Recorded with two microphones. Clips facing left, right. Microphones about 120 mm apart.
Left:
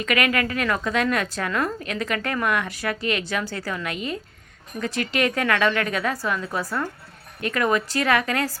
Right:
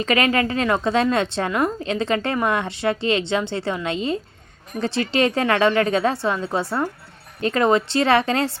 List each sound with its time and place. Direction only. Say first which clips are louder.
0.0 s a woman's voice: right 3 dB; 30° right (ahead or behind)